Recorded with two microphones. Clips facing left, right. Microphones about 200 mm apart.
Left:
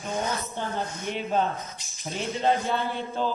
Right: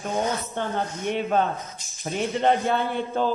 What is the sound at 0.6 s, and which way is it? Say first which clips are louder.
Speech: right 4 dB; 55° right (ahead or behind).